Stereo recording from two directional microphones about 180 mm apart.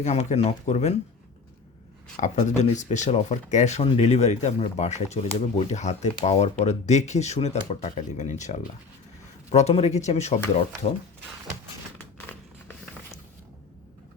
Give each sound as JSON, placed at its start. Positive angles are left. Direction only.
{"t": 0.0, "sound": "speech", "side_deg": 40}
{"t": 2.2, "sound": "speech", "side_deg": 40}
{"t": 12.3, "sound": "a sound", "side_deg": 10}